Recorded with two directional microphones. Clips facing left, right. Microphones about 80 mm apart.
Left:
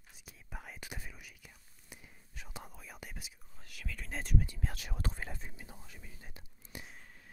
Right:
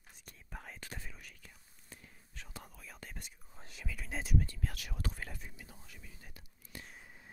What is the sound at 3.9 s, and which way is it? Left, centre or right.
Whispering, centre.